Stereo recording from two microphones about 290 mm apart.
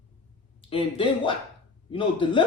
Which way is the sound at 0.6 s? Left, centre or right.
Centre.